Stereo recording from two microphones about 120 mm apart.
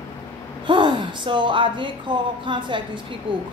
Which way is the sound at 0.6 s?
40° right (ahead or behind).